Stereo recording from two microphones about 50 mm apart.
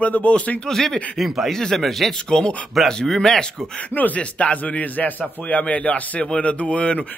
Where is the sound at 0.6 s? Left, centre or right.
Centre.